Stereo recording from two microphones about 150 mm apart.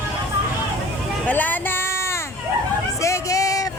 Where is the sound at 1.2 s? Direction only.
10° left (ahead or behind).